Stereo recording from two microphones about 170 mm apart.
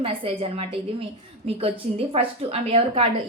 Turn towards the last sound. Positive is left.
turn(degrees=-35)  # may be behind; listen again after turning